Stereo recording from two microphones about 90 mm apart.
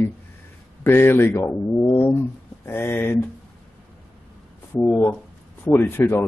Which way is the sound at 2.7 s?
25° left (ahead or behind).